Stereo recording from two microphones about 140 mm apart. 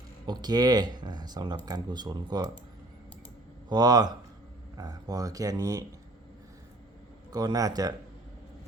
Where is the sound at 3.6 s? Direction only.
30° right (ahead or behind).